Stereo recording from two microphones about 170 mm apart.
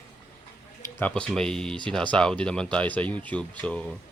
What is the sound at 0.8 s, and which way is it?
Speech, 10° left (ahead or behind).